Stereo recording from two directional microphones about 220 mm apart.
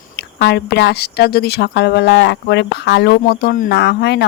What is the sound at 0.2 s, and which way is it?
Speech, 50° left (ahead or behind).